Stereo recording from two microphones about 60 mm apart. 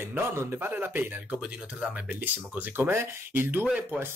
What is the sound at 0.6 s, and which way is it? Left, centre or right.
Speech, right.